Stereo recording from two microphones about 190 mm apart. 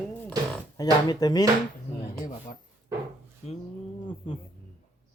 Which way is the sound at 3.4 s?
35° left (ahead or behind).